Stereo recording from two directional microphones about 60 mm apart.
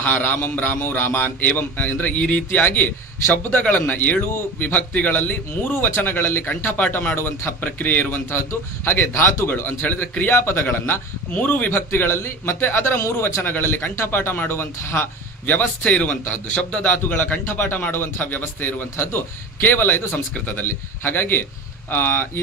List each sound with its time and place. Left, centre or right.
0.0 s a man's voice: left
7.2 s a man's voice: left
7.6 s a man's voice: left
11.3 s a man's voice: left
11.7 s a man's voice: left
13.4 s a man's voice: left